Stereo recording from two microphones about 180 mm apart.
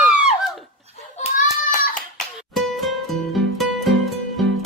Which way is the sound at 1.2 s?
45° left (ahead or behind).